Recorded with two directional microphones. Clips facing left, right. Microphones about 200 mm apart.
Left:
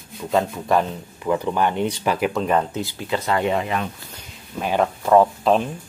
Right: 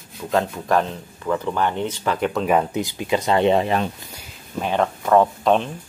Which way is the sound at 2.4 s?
15° right (ahead or behind).